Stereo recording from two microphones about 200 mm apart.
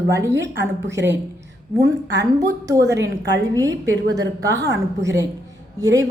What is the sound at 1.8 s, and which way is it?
Speech, 55° right (ahead or behind).